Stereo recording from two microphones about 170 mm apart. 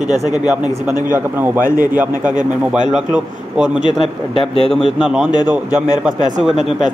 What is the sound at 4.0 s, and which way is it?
Speech, 30° left (ahead or behind).